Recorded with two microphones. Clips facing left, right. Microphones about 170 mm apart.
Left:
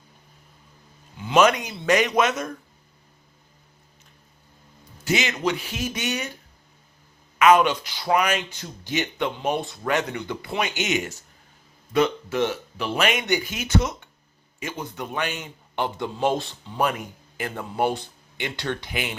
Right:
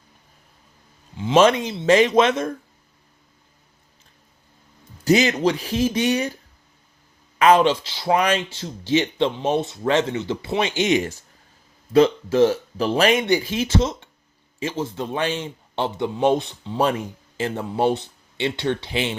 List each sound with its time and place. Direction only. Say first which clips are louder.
1.1 s speech: right 3 dB; 25° right (ahead or behind)
5.0 s speech: right 7 dB; 35° right (ahead or behind)
7.3 s speech: right 2 dB; 30° right (ahead or behind)